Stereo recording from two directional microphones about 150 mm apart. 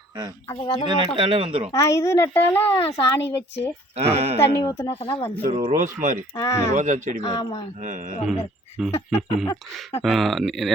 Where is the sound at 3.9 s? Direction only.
45° right (ahead or behind).